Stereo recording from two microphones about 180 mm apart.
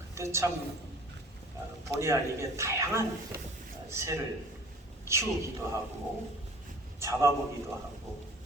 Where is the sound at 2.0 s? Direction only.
15° right (ahead or behind).